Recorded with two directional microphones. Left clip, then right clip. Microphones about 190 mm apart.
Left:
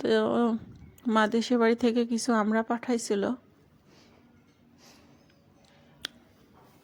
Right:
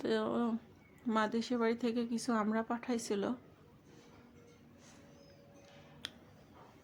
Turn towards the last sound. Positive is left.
turn(degrees=30)  # may be behind; listen again after turning